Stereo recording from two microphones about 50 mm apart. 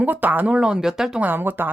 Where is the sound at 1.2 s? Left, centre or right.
Right.